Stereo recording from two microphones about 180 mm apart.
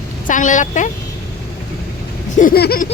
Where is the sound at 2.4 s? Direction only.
55° left (ahead or behind).